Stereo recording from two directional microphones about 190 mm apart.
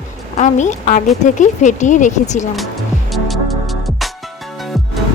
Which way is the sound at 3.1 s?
Centre (ahead or behind).